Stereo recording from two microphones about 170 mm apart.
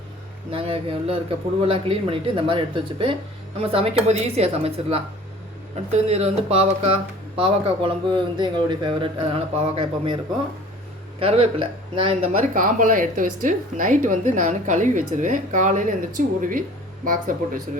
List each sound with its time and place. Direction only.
0.5 s speech: 35° right (ahead or behind)
11.2 s speech: 35° right (ahead or behind)
12.5 s a woman's voice: 50° right (ahead or behind)